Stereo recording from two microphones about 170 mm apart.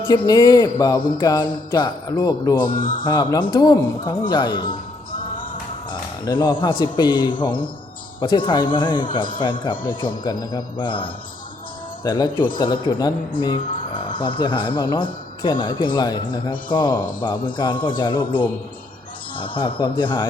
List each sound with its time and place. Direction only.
0.3 s speech: 25° left (ahead or behind)
2.6 s speech: 50° left (ahead or behind)
3.0 s speech: 25° left (ahead or behind)
5.9 s speech: 25° left (ahead or behind)